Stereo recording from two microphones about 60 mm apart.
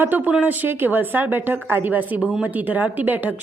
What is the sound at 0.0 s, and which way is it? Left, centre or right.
A woman's voice, right.